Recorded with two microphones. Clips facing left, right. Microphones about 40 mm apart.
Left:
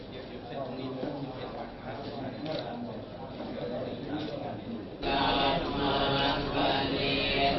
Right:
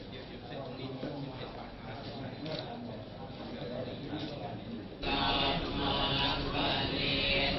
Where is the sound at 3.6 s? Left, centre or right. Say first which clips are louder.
Left 4 dB; centre.